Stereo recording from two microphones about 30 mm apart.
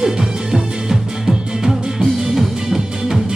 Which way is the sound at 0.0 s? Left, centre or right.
Centre.